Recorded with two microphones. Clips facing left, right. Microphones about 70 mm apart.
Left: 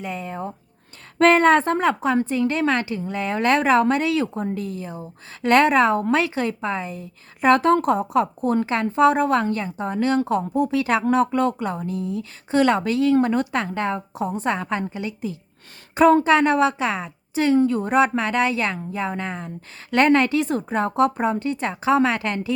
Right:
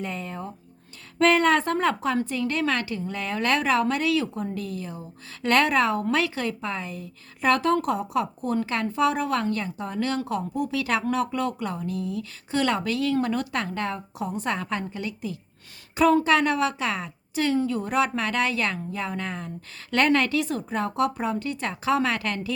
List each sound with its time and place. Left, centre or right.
0.0 s speech: centre
1.2 s a woman's voice: left
16.0 s a woman's voice: left
17.6 s a woman's voice: left